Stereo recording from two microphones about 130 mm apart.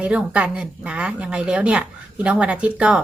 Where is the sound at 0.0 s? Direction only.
10° right (ahead or behind).